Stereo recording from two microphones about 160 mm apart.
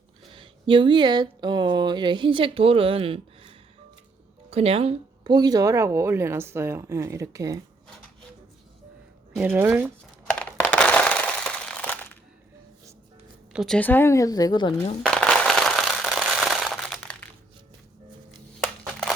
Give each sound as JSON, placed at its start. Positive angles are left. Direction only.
{"t": 0.3, "sound": "speech", "side_deg": -30}
{"t": 4.5, "sound": "speech", "side_deg": -35}
{"t": 9.3, "sound": "speech", "side_deg": -10}
{"t": 10.2, "sound": "crushing", "side_deg": 10}
{"t": 13.5, "sound": "speech", "side_deg": 0}
{"t": 13.7, "sound": "speech", "side_deg": 10}
{"t": 15.0, "sound": "a sound", "side_deg": 5}
{"t": 18.6, "sound": "crushing", "side_deg": 5}